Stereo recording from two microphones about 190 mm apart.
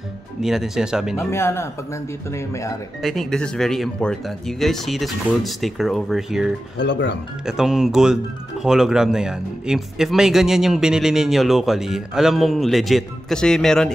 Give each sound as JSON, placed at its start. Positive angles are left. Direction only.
{"t": 0.4, "sound": "speech", "side_deg": 0}
{"t": 1.1, "sound": "speech", "side_deg": 15}
{"t": 3.0, "sound": "speech", "side_deg": 0}
{"t": 6.8, "sound": "speech", "side_deg": 65}
{"t": 7.4, "sound": "speech", "side_deg": -5}